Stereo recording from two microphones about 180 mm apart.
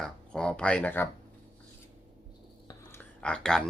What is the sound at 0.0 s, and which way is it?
Speech, 5° left (ahead or behind).